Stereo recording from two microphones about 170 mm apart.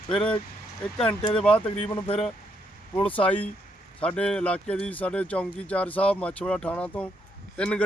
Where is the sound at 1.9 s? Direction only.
35° left (ahead or behind).